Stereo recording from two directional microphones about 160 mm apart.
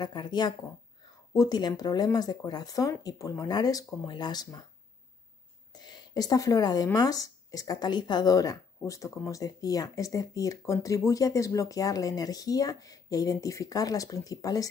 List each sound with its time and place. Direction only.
0.0 s speech: 25° left (ahead or behind)
5.7 s speech: 25° left (ahead or behind)